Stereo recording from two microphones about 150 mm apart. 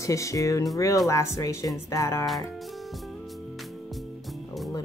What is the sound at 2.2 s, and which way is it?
Music, centre (ahead or behind).